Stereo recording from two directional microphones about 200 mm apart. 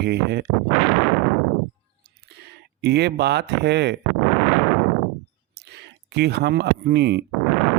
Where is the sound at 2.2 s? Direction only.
55° right (ahead or behind).